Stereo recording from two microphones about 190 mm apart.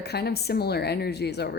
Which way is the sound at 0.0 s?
60° left (ahead or behind).